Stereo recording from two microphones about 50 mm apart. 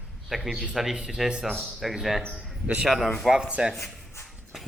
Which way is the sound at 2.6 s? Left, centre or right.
Right.